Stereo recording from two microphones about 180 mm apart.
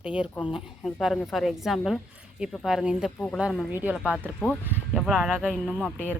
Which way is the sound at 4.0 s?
Centre (ahead or behind).